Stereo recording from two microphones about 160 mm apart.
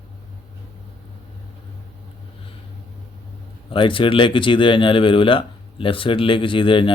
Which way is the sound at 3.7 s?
30° left (ahead or behind).